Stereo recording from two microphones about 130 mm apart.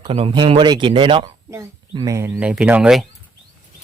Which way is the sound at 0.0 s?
45° right (ahead or behind).